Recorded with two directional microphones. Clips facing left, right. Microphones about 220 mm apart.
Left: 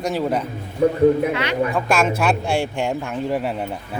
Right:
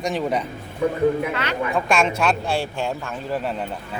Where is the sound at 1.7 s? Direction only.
5° left (ahead or behind).